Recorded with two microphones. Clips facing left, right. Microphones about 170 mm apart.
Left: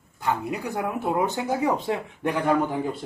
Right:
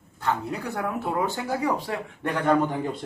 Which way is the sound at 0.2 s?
15° left (ahead or behind).